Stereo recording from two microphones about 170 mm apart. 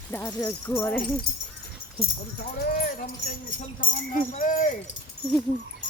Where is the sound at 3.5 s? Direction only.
55° left (ahead or behind).